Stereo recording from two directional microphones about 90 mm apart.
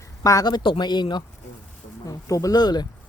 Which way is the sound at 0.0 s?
40° left (ahead or behind).